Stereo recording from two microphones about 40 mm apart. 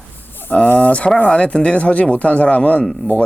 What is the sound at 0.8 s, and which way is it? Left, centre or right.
Speech, left.